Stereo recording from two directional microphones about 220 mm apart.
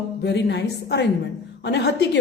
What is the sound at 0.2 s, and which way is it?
A woman's voice, 50° left (ahead or behind).